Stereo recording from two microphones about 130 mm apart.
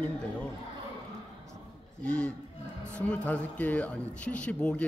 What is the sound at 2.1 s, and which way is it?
A man's voice, 10° left (ahead or behind).